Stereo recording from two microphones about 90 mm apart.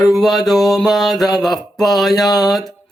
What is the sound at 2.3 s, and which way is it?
Speech, 45° left (ahead or behind).